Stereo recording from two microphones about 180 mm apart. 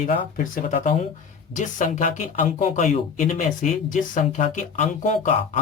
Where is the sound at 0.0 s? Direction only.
50° left (ahead or behind).